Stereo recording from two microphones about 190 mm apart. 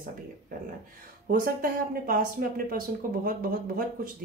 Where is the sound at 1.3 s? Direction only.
45° right (ahead or behind).